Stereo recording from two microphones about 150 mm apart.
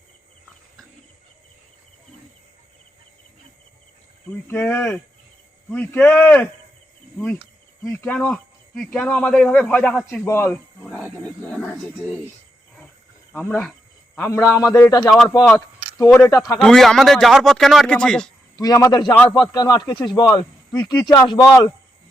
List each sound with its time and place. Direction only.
4.4 s speech: 15° left (ahead or behind)
10.8 s wild animals: 5° right (ahead or behind)
11.2 s speech: 10° left (ahead or behind)
13.3 s speech: 10° left (ahead or behind)
16.2 s speech: 20° left (ahead or behind)
16.6 s a man's voice: 5° left (ahead or behind)
18.5 s speech: 20° left (ahead or behind)
19.1 s speech: 10° left (ahead or behind)
19.5 s speech: 25° left (ahead or behind)